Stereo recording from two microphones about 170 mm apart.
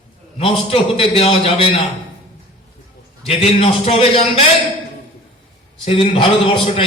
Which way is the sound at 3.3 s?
35° left (ahead or behind).